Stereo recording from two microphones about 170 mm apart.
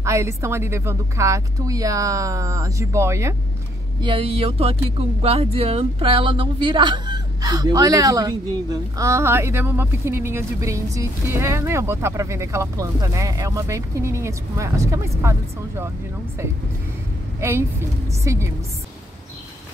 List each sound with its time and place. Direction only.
0.0 s speech: 15° right (ahead or behind)
4.0 s speech: 30° right (ahead or behind)
17.4 s a woman's voice: 15° right (ahead or behind)